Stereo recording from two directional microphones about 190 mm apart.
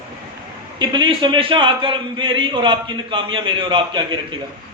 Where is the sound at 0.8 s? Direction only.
25° right (ahead or behind).